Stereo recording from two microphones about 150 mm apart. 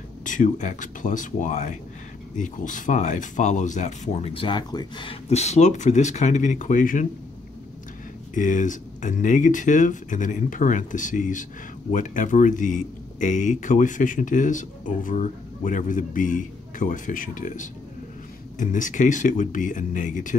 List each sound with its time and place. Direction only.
0.2 s speech: 60° left (ahead or behind)
8.4 s speech: 60° left (ahead or behind)